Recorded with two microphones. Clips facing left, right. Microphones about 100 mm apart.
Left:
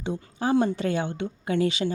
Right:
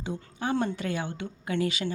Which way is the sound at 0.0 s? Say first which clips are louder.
Left 4 dB; 30° left (ahead or behind).